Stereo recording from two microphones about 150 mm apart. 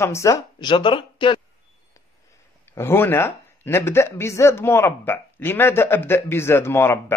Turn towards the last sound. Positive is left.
turn(degrees=15)  # may be behind; listen again after turning